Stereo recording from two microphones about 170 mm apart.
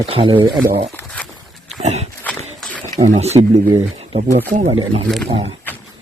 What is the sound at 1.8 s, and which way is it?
Speech, 40° right (ahead or behind).